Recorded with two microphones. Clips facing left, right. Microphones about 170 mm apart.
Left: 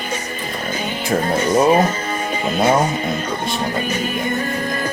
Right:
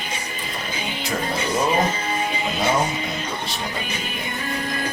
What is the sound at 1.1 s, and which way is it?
Music, 50° left (ahead or behind).